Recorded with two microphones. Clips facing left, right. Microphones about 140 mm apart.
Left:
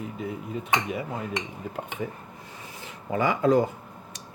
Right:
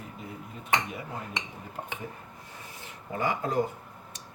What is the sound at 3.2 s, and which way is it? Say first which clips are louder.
Speech: left 7 dB; 90° left.